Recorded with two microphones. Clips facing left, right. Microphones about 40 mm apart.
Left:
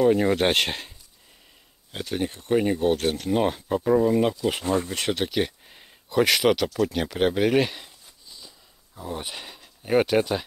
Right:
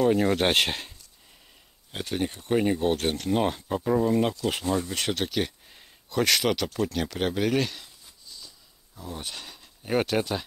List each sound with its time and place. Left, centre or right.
0.0 s speech: centre
4.6 s speech: left
4.9 s speech: centre
6.9 s a sound: centre
9.8 s speech: centre